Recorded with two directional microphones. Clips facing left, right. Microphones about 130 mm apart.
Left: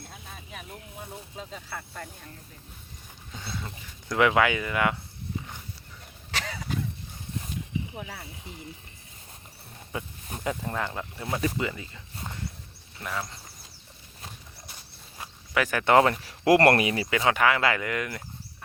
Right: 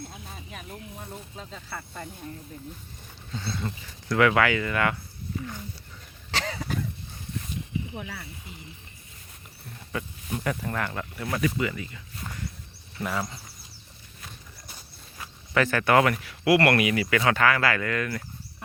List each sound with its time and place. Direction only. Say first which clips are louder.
0.5 s speech: right 1 dB; 5° left (ahead or behind)
3.3 s speech: right 5 dB; 10° left (ahead or behind)
6.3 s a sound: right 4 dB; 35° right (ahead or behind)
8.0 s speech: right 1 dB; 30° left (ahead or behind)
9.9 s speech: right 4 dB; 20° left (ahead or behind)
13.0 s speech: right 4 dB; 5° right (ahead or behind)
15.2 s cricket: right 3 dB; 10° left (ahead or behind)
15.8 s speech: left 3 dB; 25° left (ahead or behind)
17.2 s speech: even; 15° left (ahead or behind)